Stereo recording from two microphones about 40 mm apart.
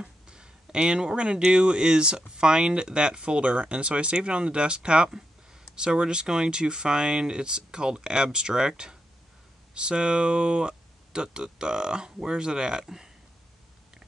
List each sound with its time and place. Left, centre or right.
0.0 s speech: right